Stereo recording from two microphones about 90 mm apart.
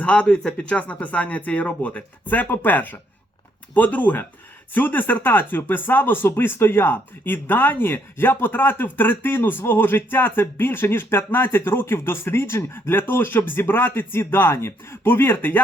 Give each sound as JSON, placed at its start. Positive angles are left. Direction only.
{"t": 0.0, "sound": "speech", "side_deg": 15}